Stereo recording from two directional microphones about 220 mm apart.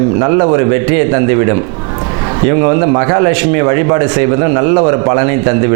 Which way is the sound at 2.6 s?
20° right (ahead or behind).